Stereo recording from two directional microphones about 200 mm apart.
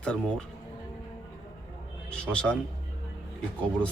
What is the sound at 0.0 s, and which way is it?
Speech, 5° left (ahead or behind).